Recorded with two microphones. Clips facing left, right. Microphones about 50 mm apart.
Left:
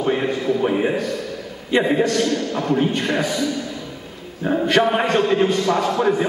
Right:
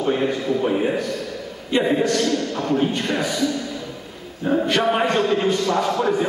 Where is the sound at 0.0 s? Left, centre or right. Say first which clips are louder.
Left 1 dB; centre.